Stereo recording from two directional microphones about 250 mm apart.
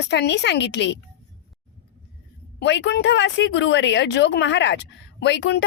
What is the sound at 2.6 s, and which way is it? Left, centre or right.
A woman's voice, left.